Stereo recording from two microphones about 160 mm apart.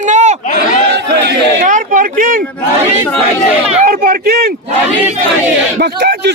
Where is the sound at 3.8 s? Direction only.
65° right (ahead or behind).